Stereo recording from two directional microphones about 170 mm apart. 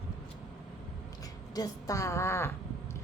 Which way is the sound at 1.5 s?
20° left (ahead or behind).